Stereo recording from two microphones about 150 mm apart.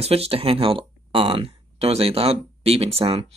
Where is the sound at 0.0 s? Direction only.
40° right (ahead or behind).